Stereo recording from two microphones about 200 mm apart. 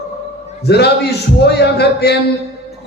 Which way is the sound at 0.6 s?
55° left (ahead or behind).